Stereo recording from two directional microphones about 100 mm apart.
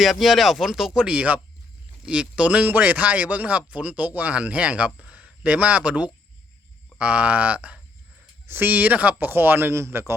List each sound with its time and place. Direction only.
0.0 s speech: centre (ahead or behind); by 10.1 s 25° right (ahead or behind)